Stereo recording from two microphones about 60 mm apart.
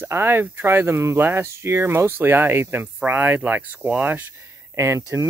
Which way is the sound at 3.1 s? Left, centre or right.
Right.